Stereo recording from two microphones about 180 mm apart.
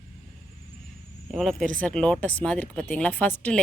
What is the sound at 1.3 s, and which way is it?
Speech, centre (ahead or behind).